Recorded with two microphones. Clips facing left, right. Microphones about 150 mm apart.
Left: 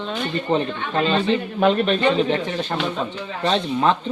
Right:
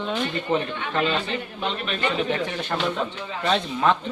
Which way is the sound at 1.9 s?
25° left (ahead or behind).